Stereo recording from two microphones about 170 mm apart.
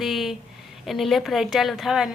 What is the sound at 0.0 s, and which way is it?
A woman's voice, centre (ahead or behind).